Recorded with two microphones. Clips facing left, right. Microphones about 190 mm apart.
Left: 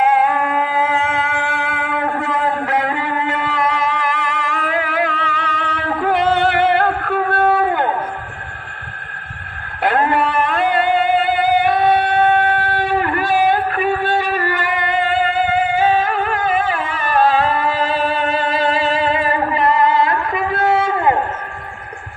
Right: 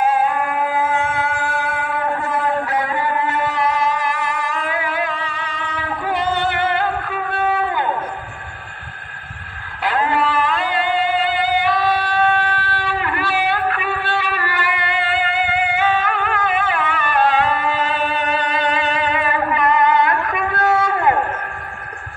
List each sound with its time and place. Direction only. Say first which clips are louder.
0.0 s music: left 2 dB; 65° left (ahead or behind)
9.8 s music: left 3 dB; 50° left (ahead or behind); by 21.2 s 25° left (ahead or behind)